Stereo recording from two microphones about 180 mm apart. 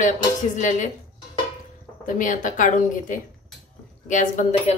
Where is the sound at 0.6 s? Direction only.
45° left (ahead or behind).